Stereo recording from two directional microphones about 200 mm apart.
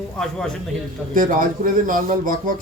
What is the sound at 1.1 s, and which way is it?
A man's voice, 45° right (ahead or behind).